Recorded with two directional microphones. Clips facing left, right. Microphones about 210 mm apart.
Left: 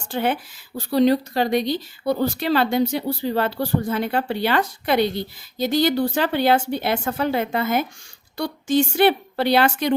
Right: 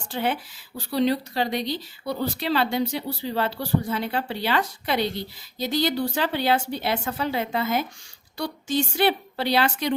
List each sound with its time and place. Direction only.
0.1 s speech: 50° left (ahead or behind)